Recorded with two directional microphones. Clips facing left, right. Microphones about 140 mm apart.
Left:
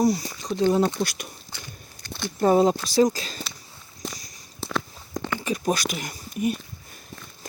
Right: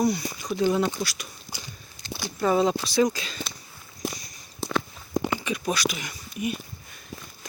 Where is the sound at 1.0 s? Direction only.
50° left (ahead or behind).